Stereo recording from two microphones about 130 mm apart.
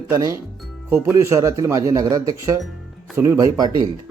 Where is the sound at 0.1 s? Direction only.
25° right (ahead or behind).